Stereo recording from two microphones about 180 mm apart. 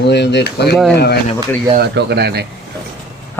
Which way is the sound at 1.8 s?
65° right (ahead or behind).